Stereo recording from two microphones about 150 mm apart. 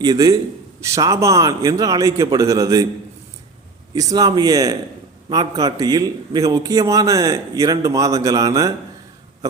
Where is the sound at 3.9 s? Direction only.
25° right (ahead or behind).